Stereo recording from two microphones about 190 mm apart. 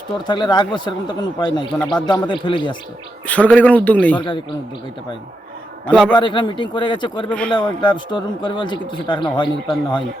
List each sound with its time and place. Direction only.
0.3 s speech: 20° left (ahead or behind)
3.2 s a man's voice: 5° left (ahead or behind)
5.8 s a man's voice: 5° left (ahead or behind)
6.1 s speech: 25° left (ahead or behind)
7.3 s a man's voice: 5° left (ahead or behind)
7.5 s speech: 25° left (ahead or behind)